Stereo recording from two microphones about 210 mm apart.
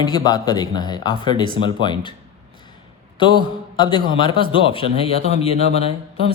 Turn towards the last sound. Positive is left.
turn(degrees=30)  # may be behind; listen again after turning